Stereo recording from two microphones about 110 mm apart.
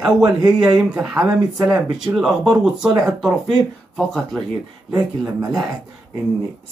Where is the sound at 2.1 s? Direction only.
5° right (ahead or behind).